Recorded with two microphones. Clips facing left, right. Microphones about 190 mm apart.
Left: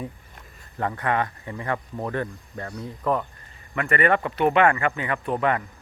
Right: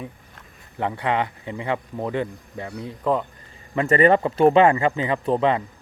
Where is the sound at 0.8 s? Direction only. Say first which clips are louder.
Right 1 dB; 20° right (ahead or behind).